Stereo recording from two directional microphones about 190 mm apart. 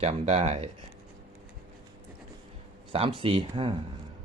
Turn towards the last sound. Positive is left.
turn(degrees=-25)  # may be behind; listen again after turning